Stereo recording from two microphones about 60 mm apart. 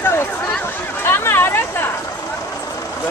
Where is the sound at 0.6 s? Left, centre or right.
Left.